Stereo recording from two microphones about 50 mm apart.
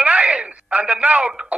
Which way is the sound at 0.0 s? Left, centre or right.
Right.